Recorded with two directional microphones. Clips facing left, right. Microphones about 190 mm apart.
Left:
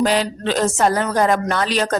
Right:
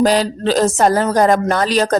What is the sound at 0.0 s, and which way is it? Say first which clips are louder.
Speech: right 4 dB; 40° right (ahead or behind).